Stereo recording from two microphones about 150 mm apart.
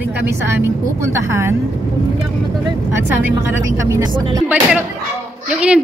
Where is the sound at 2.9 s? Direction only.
15° right (ahead or behind).